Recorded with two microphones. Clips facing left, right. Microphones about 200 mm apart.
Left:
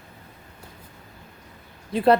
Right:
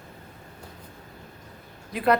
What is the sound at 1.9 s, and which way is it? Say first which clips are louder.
Speech: left 4 dB; 30° left (ahead or behind).